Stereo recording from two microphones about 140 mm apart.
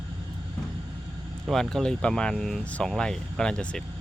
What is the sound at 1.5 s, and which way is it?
Speech, centre (ahead or behind).